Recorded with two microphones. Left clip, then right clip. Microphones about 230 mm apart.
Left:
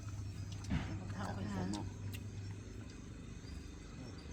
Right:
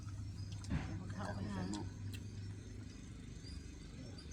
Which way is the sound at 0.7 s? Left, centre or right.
Left.